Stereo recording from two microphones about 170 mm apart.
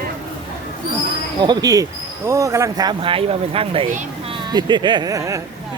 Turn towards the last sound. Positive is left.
turn(degrees=-20)  # may be behind; listen again after turning